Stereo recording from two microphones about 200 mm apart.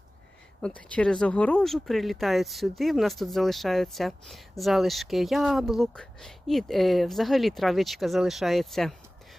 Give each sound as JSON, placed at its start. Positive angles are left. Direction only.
{"t": 0.6, "sound": "speech", "side_deg": 5}